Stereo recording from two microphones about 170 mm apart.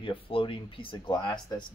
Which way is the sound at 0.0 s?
30° left (ahead or behind).